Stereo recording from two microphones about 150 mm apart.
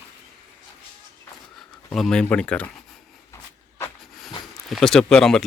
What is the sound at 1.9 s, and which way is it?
Speech, 5° left (ahead or behind).